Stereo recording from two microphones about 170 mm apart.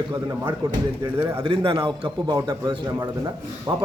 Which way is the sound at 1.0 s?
15° right (ahead or behind).